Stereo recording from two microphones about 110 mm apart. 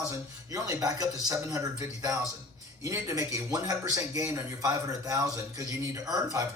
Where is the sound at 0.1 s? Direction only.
30° right (ahead or behind).